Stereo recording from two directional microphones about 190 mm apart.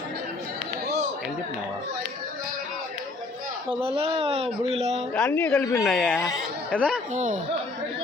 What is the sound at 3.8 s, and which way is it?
Speech, 30° right (ahead or behind).